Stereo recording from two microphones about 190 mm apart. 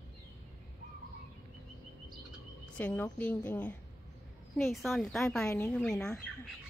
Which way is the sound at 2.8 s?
10° left (ahead or behind).